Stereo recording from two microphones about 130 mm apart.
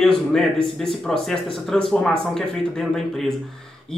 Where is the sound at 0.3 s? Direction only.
5° left (ahead or behind).